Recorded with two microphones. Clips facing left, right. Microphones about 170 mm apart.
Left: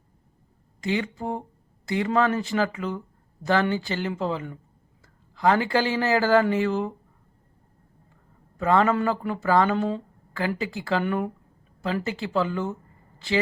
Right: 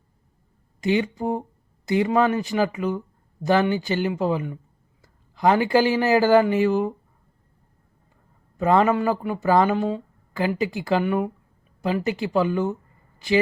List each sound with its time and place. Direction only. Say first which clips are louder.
0.8 s speech: right 5 dB; 20° right (ahead or behind)
8.5 s a man's voice: right 2 dB; 20° right (ahead or behind)